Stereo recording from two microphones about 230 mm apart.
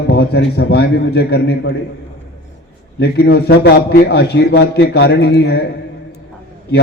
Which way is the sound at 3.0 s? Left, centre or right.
Left.